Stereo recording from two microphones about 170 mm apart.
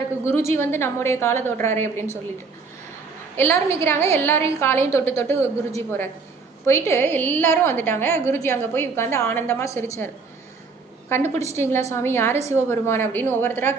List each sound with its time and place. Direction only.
0.5 s a woman's voice: 15° left (ahead or behind)
3.3 s a woman's voice: 15° left (ahead or behind)
11.1 s a woman's voice: 15° left (ahead or behind)